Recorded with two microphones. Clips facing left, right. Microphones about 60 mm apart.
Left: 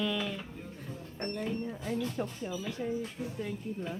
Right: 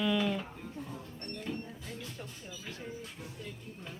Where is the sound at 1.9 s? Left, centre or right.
Left.